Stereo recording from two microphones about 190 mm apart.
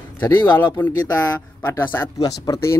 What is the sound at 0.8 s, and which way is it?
Speech, 15° left (ahead or behind).